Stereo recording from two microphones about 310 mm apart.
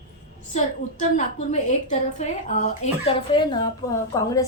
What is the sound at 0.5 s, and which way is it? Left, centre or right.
A woman's voice, left.